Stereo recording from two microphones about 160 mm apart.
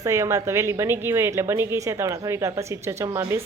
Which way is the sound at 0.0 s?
20° right (ahead or behind).